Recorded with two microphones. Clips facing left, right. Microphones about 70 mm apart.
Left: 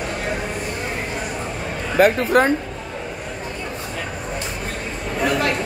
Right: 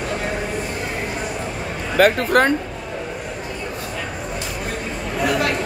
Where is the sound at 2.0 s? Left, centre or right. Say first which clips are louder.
Even; right.